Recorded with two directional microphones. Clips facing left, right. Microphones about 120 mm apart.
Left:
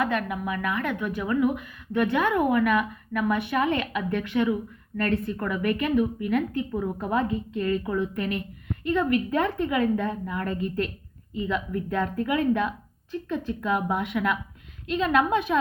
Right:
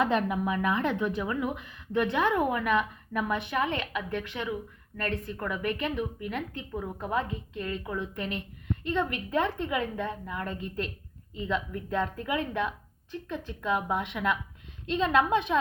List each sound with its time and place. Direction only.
0.0 s a woman's voice: 25° right (ahead or behind)